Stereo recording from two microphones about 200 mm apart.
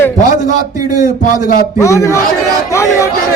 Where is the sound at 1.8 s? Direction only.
15° left (ahead or behind).